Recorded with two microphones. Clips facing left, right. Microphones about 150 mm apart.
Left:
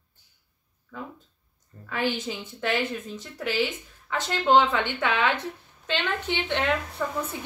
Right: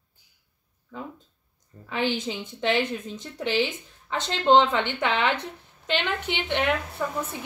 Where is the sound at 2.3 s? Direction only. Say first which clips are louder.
Right 2 dB; 15° right (ahead or behind).